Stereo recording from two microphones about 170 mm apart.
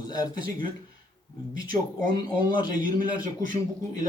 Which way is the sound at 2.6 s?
25° left (ahead or behind).